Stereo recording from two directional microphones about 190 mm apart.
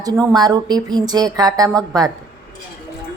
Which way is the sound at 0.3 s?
20° right (ahead or behind).